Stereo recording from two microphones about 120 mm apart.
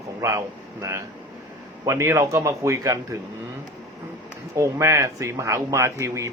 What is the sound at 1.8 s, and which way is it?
Speech, 25° right (ahead or behind).